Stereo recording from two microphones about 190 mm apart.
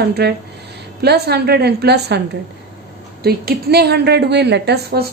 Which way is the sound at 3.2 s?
55° right (ahead or behind).